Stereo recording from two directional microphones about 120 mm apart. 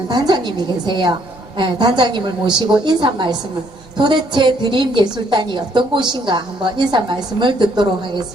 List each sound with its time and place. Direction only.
0.1 s a woman's voice: 40° right (ahead or behind)